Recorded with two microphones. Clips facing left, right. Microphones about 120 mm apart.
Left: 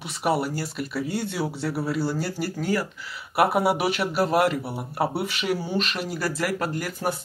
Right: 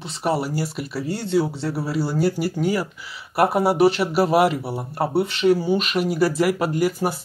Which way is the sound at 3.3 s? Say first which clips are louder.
Right 2 dB; 5° left (ahead or behind).